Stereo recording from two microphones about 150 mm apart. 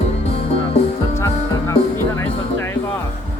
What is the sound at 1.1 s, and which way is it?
Music, 20° left (ahead or behind).